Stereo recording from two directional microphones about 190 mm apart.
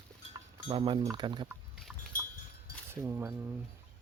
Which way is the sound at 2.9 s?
15° right (ahead or behind).